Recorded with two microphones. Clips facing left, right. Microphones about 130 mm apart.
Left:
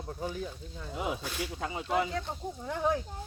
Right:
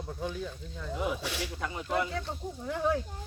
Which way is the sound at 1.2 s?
80° right.